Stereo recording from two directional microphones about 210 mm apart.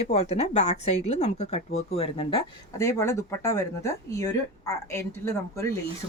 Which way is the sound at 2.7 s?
15° left (ahead or behind).